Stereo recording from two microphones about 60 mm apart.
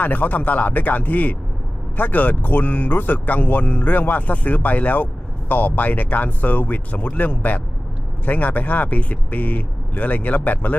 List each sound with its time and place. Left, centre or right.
0.0 s speech: left